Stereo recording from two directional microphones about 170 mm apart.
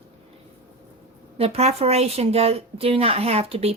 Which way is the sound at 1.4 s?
40° right (ahead or behind).